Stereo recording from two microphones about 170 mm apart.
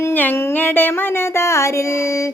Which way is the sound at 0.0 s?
10° left (ahead or behind).